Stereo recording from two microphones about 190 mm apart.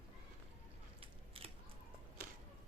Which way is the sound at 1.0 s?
30° right (ahead or behind).